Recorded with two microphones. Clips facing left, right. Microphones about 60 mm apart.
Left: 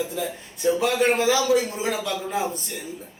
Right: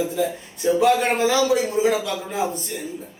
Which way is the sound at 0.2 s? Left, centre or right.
Centre.